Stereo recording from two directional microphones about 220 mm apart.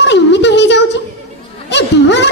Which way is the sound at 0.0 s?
55° left (ahead or behind).